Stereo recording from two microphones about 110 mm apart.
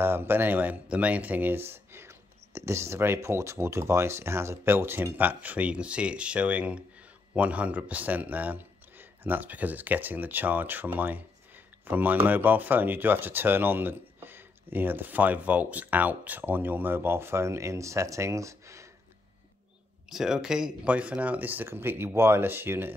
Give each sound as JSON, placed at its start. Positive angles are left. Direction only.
{"t": 0.0, "sound": "a man's voice", "side_deg": -20}
{"t": 20.1, "sound": "a man's voice", "side_deg": -5}